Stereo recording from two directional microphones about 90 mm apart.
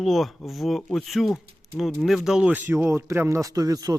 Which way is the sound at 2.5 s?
20° right (ahead or behind).